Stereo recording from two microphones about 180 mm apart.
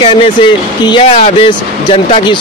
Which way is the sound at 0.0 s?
30° left (ahead or behind).